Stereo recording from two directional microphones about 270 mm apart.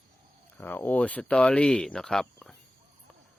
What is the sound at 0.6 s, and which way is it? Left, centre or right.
Speech, centre.